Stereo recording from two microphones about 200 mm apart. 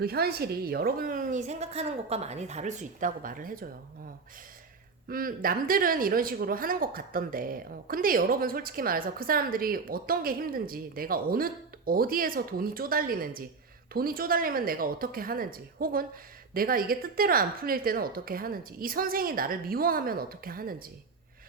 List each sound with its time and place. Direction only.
0.0 s speech: 50° right (ahead or behind)
5.0 s speech: 45° right (ahead or behind)